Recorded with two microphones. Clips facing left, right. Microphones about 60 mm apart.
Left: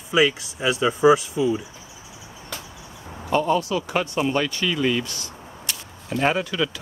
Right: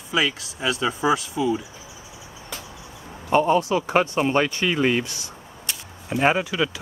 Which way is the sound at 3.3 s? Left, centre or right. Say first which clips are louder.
Right 2 dB; right.